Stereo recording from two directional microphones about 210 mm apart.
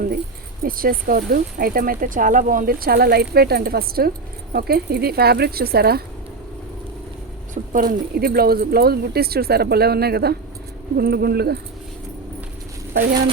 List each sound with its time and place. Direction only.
0.6 s speech: 45° right (ahead or behind)
7.5 s speech: 40° right (ahead or behind)